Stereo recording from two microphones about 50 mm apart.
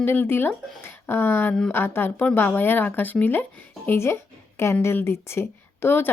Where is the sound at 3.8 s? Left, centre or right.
Left.